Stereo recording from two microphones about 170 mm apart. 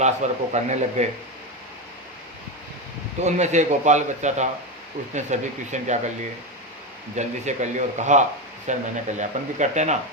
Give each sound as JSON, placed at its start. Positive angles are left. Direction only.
{"t": 0.0, "sound": "a man's voice", "side_deg": -40}
{"t": 3.2, "sound": "a man's voice", "side_deg": -45}
{"t": 7.2, "sound": "a man's voice", "side_deg": -45}